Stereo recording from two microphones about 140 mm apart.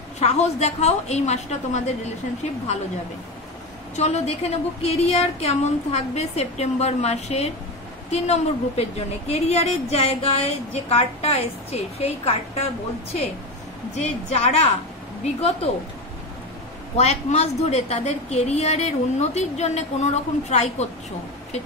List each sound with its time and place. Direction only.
0.2 s a woman's voice: 50° left (ahead or behind)
3.9 s a woman's voice: 50° left (ahead or behind)
16.9 s a woman's voice: 50° left (ahead or behind)